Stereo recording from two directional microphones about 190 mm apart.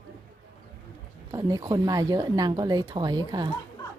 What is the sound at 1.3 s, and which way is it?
Speech, 20° right (ahead or behind).